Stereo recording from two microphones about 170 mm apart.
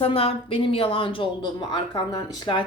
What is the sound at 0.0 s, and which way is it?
Speech, 35° left (ahead or behind).